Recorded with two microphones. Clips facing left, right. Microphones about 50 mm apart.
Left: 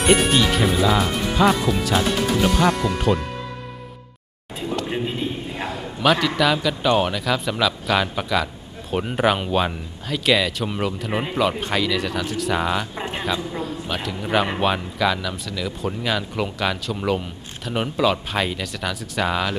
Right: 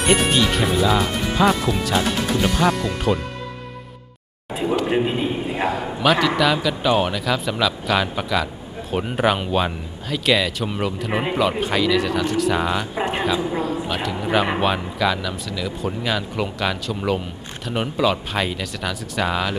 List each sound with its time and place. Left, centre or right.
0.0 s speech: centre
4.6 s a sound: centre
5.9 s speech: centre
12.9 s speech: centre
13.6 s speech: centre